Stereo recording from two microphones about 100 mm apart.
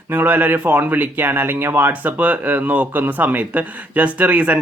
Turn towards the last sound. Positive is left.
turn(degrees=-15)  # may be behind; listen again after turning